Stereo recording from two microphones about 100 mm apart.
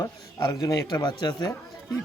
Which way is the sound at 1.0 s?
50° left (ahead or behind).